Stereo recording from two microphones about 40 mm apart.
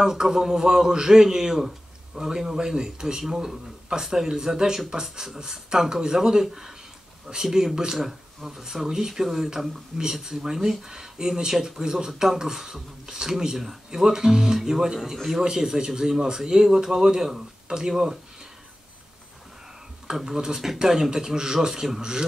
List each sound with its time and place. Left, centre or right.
0.0 s speech: centre
20.2 s speech: centre